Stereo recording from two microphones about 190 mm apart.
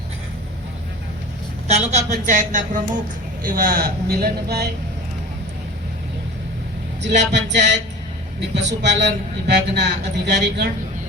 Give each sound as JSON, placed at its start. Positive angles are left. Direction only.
{"t": 1.6, "sound": "a woman's voice", "side_deg": -35}
{"t": 7.2, "sound": "a sound", "side_deg": -65}
{"t": 8.4, "sound": "a man's voice", "side_deg": -65}